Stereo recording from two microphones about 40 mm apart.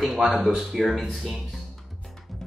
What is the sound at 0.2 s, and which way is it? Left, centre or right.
Speech, centre.